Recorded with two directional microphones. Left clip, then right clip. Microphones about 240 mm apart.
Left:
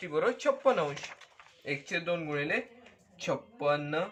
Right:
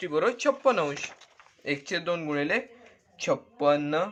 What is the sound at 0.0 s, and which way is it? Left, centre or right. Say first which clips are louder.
Speech: right 4 dB; right.